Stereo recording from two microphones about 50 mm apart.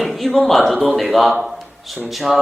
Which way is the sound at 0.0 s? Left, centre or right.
Centre.